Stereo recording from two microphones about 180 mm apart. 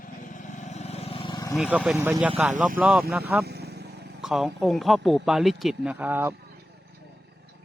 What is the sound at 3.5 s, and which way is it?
Vehicle, 65° right (ahead or behind).